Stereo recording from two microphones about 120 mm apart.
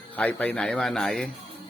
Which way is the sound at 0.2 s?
15° left (ahead or behind).